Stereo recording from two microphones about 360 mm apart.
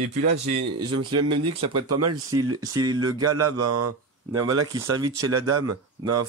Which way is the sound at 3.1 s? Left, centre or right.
Right.